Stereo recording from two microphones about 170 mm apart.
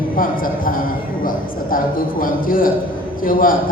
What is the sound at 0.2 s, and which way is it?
A man's voice, 55° left (ahead or behind).